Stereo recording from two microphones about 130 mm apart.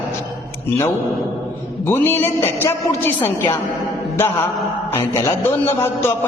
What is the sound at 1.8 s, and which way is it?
A woman's voice, 15° left (ahead or behind).